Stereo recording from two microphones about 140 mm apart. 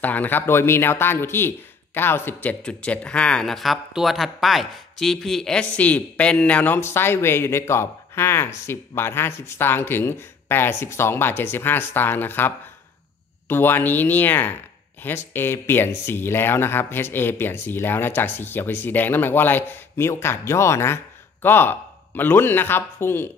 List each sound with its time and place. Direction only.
0.0 s speech: 10° left (ahead or behind)